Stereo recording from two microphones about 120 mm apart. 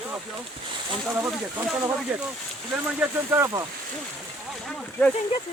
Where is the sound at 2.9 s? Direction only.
20° right (ahead or behind).